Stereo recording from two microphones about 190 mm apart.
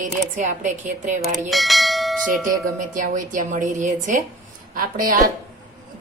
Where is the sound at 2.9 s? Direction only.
45° right (ahead or behind).